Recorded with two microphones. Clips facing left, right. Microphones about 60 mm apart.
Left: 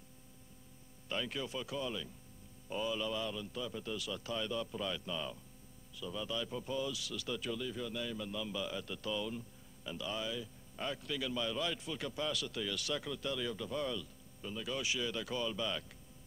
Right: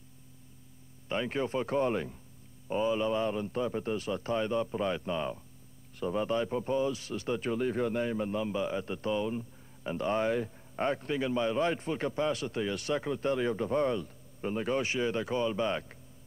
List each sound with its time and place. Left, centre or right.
1.0 s a man's voice: right
2.7 s a man's voice: right
9.8 s a man's voice: right